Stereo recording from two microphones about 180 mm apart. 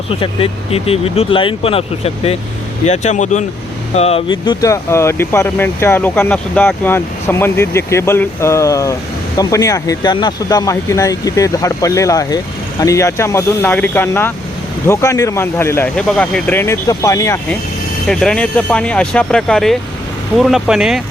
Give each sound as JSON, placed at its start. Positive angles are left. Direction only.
{"t": 0.2, "sound": "speech", "side_deg": 30}
{"t": 18.1, "sound": "speech", "side_deg": 5}